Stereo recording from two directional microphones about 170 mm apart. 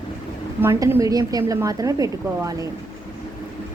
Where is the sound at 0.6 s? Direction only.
15° right (ahead or behind).